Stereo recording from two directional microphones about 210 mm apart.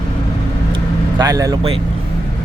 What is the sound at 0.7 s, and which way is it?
Vehicle, 20° right (ahead or behind).